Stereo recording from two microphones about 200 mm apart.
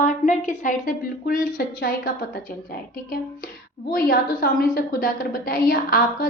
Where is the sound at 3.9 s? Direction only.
45° left (ahead or behind).